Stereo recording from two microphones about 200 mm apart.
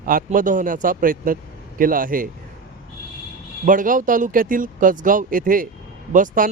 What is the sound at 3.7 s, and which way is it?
Speech, 40° right (ahead or behind).